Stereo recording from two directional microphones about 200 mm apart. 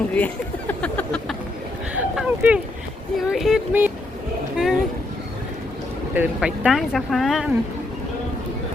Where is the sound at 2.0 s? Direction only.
5° right (ahead or behind).